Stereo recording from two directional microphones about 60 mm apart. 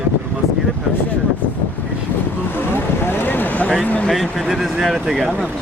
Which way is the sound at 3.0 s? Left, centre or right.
Left.